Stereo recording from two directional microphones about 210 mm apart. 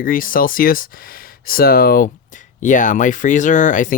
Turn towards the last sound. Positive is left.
turn(degrees=35)  # may be behind; listen again after turning